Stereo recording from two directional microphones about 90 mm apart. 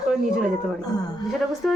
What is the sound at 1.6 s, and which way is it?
Speech, 5° left (ahead or behind).